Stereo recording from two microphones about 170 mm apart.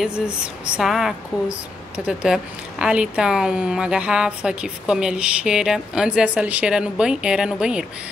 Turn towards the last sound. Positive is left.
turn(degrees=-5)  # may be behind; listen again after turning